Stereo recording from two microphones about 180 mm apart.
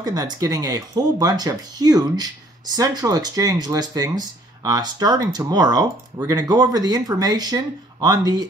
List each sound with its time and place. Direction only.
0.0 s speech: 20° right (ahead or behind)